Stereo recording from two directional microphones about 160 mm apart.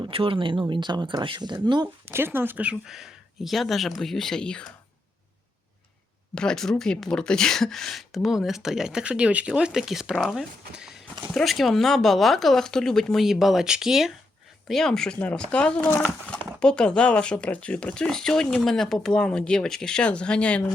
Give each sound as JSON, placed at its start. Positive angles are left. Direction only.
{"t": 0.0, "sound": "speech", "side_deg": -35}
{"t": 6.3, "sound": "speech", "side_deg": 5}